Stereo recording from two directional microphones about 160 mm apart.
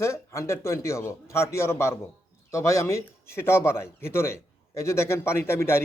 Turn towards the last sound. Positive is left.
turn(degrees=15)  # may be behind; listen again after turning